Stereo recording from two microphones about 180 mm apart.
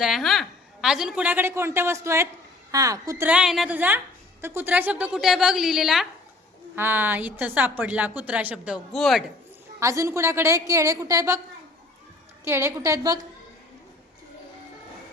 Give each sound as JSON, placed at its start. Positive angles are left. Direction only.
{"t": 0.0, "sound": "a woman's voice", "side_deg": 0}
{"t": 9.8, "sound": "a woman's voice", "side_deg": -15}
{"t": 12.5, "sound": "a woman's voice", "side_deg": -15}